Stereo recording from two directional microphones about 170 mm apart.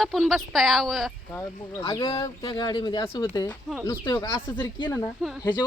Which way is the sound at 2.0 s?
30° left (ahead or behind).